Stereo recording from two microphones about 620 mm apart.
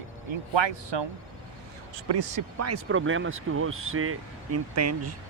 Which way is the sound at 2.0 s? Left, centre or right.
Right.